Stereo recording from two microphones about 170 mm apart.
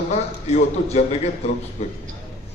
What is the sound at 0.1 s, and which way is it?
A man's voice, 40° left (ahead or behind).